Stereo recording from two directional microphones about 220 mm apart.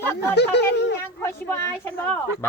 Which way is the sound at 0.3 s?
50° left (ahead or behind).